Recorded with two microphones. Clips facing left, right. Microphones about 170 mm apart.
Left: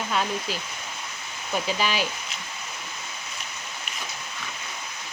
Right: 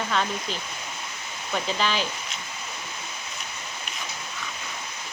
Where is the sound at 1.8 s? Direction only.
10° left (ahead or behind).